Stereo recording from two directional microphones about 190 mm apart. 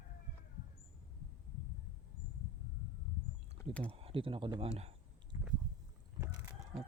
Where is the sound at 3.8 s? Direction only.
30° right (ahead or behind).